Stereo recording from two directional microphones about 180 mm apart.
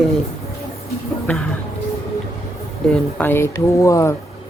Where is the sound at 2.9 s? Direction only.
10° left (ahead or behind).